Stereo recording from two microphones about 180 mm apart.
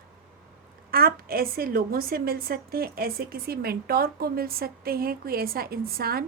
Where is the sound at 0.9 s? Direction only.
55° right (ahead or behind).